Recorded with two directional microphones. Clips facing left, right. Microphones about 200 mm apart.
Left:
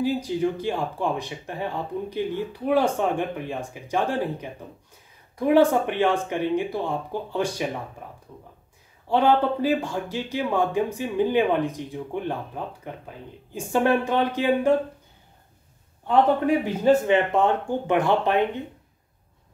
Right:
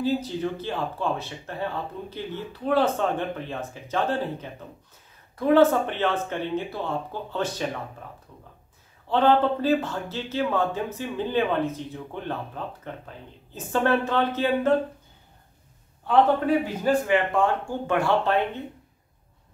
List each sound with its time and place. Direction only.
0.0 s speech: 15° left (ahead or behind)
9.1 s speech: 10° left (ahead or behind)
16.8 s speech: 25° left (ahead or behind)